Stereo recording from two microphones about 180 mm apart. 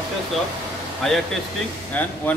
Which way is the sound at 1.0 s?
5° left (ahead or behind).